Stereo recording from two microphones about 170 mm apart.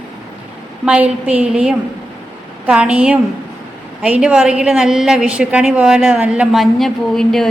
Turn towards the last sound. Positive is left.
turn(degrees=0)  # may be behind; listen again after turning